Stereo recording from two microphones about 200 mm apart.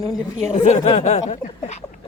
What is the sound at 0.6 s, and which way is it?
Speech, 40° left (ahead or behind).